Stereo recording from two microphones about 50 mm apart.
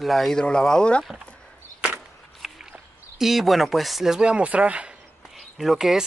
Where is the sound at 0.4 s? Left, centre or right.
Centre.